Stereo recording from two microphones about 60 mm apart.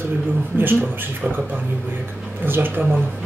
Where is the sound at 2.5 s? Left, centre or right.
Right.